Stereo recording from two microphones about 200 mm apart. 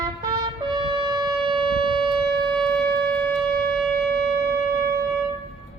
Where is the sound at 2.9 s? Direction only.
10° left (ahead or behind).